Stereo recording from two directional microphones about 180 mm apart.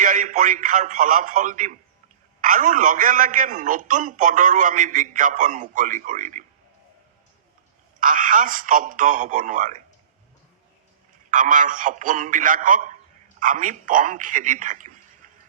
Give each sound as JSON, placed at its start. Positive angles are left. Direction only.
{"t": 0.0, "sound": "a man's voice", "side_deg": -50}
{"t": 7.9, "sound": "a man's voice", "side_deg": -50}
{"t": 11.3, "sound": "a man's voice", "side_deg": -45}